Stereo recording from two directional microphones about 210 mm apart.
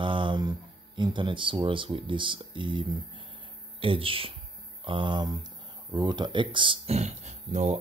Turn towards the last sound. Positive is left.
turn(degrees=-35)  # may be behind; listen again after turning